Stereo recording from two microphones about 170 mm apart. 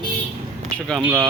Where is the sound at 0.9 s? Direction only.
5° right (ahead or behind).